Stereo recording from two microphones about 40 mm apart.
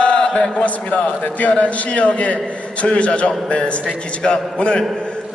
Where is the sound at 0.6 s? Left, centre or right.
Left.